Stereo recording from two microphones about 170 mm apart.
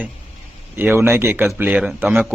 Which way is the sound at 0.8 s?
10° right (ahead or behind).